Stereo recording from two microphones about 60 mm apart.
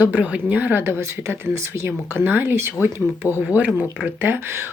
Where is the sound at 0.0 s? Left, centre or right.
Right.